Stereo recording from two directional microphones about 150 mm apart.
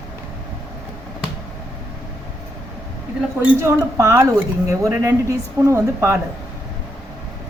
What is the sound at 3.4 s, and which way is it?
Speech, 20° right (ahead or behind).